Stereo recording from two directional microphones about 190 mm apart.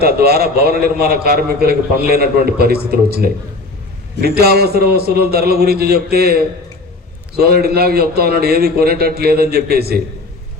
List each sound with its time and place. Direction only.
0.0 s a man's voice: 55° right (ahead or behind)